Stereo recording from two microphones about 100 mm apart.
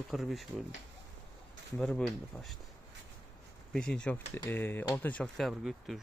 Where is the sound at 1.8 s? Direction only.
10° left (ahead or behind).